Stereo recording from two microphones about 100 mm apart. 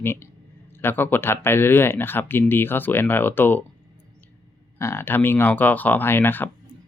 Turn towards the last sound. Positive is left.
turn(degrees=20)  # may be behind; listen again after turning